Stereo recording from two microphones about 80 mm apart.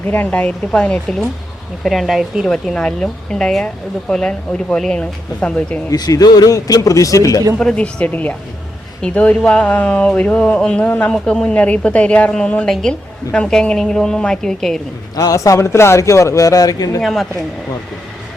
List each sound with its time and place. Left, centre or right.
0.1 s speech: left
1.8 s speech: centre
2.5 s speech: centre
5.9 s speech: left
7.6 s speech: centre
15.1 s speech: left
17.0 s speech: centre